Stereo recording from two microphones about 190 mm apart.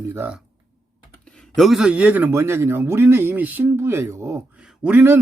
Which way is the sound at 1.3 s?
5° left (ahead or behind).